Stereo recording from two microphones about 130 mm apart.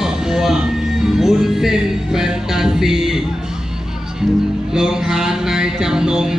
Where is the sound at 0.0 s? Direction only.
5° right (ahead or behind).